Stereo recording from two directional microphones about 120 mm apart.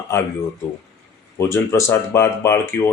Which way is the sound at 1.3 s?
20° left (ahead or behind).